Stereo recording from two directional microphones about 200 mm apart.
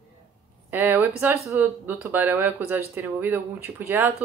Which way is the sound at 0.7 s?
10° right (ahead or behind).